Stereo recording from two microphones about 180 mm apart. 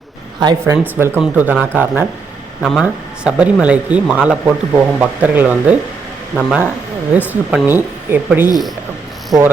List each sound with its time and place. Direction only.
0.3 s speech: 20° right (ahead or behind)
2.6 s speech: centre (ahead or behind)